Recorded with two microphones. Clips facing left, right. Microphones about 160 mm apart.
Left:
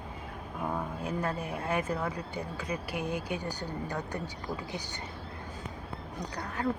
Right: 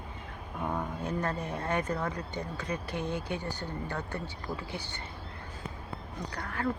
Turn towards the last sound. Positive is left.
turn(degrees=20)  # may be behind; listen again after turning